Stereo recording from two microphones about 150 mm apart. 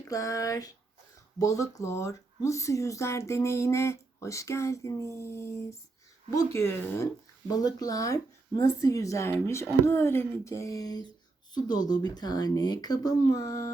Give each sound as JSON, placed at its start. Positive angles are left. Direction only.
{"t": 0.1, "sound": "speech", "side_deg": 20}